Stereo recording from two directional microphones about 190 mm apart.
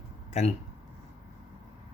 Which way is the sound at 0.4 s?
35° left (ahead or behind).